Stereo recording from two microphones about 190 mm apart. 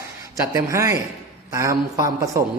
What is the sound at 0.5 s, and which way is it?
A man's voice, 15° right (ahead or behind).